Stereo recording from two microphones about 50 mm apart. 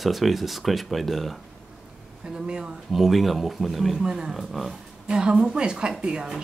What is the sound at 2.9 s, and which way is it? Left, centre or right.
Speech, centre.